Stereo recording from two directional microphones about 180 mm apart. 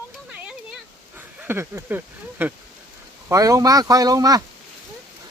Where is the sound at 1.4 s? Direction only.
10° right (ahead or behind).